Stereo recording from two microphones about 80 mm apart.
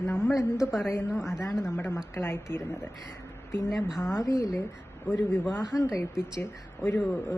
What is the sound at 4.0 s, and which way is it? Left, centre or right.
Speech, left.